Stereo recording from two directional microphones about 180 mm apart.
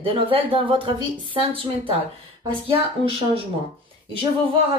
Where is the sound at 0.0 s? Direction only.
30° right (ahead or behind).